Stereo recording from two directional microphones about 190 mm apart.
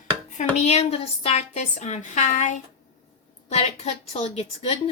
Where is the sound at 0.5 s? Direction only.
35° left (ahead or behind).